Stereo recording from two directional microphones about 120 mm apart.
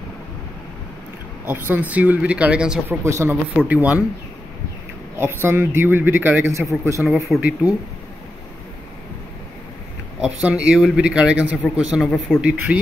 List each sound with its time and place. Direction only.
1.4 s speech: 15° right (ahead or behind)
3.0 s speech: 25° right (ahead or behind)
3.5 s speech: 10° right (ahead or behind)
5.2 s speech: 20° right (ahead or behind)
7.0 s speech: centre (ahead or behind)
10.2 s speech: 10° right (ahead or behind)